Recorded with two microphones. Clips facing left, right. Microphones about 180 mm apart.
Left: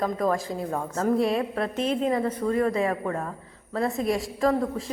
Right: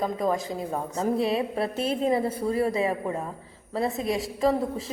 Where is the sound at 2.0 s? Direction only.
30° right (ahead or behind).